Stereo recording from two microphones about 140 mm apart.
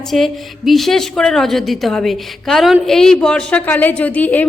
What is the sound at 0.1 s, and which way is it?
A woman's voice, centre (ahead or behind).